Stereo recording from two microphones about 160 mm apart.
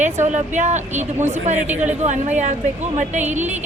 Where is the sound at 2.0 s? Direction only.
45° right (ahead or behind).